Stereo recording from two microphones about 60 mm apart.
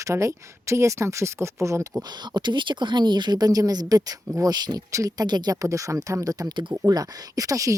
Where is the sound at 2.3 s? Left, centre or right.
Right.